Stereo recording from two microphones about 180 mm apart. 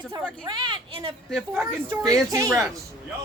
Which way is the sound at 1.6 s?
20° right (ahead or behind).